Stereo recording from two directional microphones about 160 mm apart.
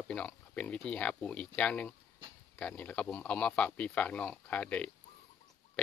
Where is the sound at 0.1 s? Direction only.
5° left (ahead or behind).